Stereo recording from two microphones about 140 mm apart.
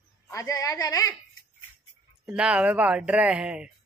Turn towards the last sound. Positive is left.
turn(degrees=-5)  # may be behind; listen again after turning